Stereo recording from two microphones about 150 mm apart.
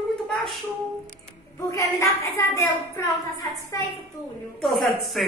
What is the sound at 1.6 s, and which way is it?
Speech, 20° left (ahead or behind).